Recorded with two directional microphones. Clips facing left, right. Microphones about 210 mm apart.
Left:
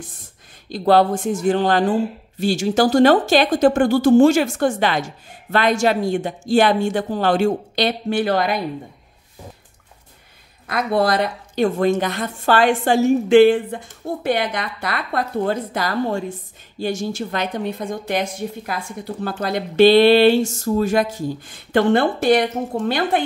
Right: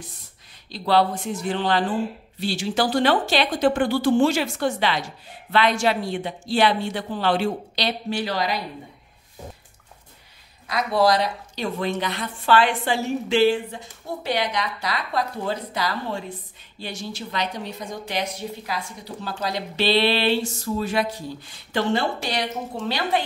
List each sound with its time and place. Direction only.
0.7 s a woman's voice: 50° left (ahead or behind)
10.7 s a woman's voice: 55° left (ahead or behind)